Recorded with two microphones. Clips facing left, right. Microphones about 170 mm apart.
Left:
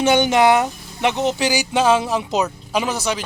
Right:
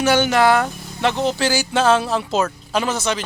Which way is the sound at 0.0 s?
20° left (ahead or behind).